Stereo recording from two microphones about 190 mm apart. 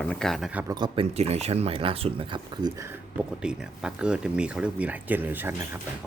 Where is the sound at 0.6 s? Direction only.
25° right (ahead or behind).